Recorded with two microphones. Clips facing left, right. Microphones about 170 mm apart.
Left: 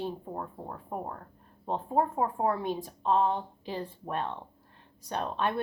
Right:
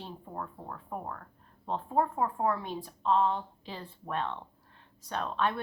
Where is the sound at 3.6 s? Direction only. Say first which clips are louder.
Left 7 dB; 45° left (ahead or behind).